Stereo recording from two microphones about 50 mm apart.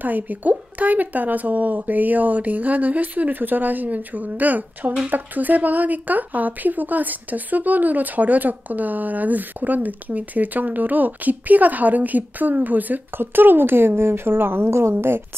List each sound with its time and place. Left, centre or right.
0.0 s speech: right